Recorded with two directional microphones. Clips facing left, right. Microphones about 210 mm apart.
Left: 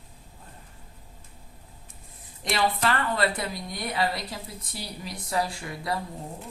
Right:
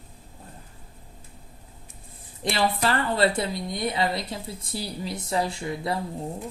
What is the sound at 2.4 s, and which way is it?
A woman's voice, 30° right (ahead or behind).